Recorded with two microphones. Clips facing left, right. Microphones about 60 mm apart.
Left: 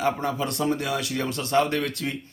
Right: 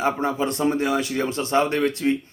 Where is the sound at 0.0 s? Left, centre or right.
Right.